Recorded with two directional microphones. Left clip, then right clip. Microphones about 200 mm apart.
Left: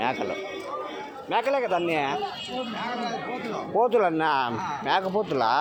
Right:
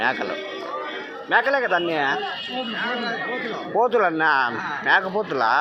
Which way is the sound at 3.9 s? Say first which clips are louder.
Right 3 dB; 15° left (ahead or behind).